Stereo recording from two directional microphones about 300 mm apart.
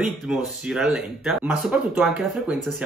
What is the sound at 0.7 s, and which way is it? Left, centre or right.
Speech, centre.